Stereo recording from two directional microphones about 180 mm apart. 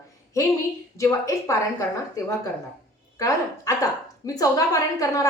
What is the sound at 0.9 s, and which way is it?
Speech, 15° left (ahead or behind).